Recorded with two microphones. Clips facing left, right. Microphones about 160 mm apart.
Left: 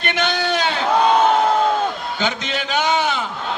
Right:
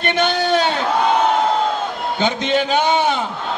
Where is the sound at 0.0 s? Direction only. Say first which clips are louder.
Right 3 dB; 30° right (ahead or behind).